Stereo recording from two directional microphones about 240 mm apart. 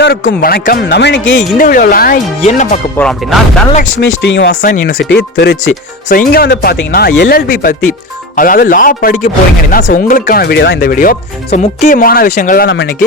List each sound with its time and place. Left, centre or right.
0.0 s a man's voice: left
1.4 s speech: left
3.0 s speech: centre
3.9 s a man's voice: left